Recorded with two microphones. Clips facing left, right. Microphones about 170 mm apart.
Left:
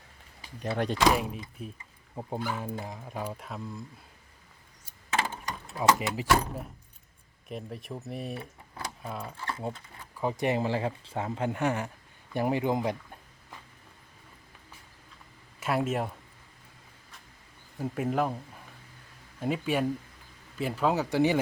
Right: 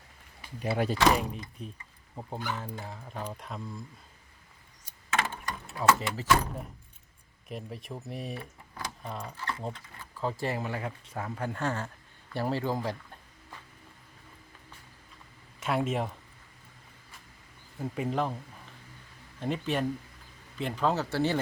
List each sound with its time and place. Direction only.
0.6 s speech: 5° right (ahead or behind)
5.2 s a sound: 15° left (ahead or behind)
5.7 s speech: 15° left (ahead or behind)
7.4 s speech: centre (ahead or behind)
10.2 s speech: 15° left (ahead or behind)
15.6 s speech: 5° left (ahead or behind)
17.7 s speech: 5° left (ahead or behind)